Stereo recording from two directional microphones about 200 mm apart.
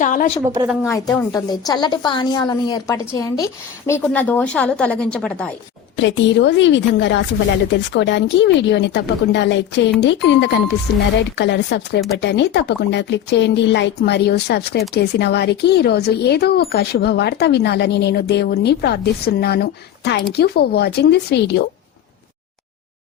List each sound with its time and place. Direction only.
0.0 s a woman's voice: 40° left (ahead or behind)
0.4 s speech: 15° right (ahead or behind)
0.8 s a woman's voice: 15° left (ahead or behind)
6.0 s speech: 65° left (ahead or behind)